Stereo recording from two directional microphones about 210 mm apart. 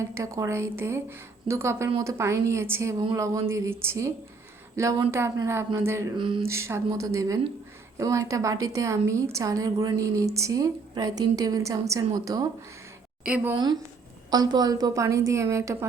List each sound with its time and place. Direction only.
0.0 s a woman's voice: 15° right (ahead or behind)
6.6 s a woman's voice: 15° right (ahead or behind)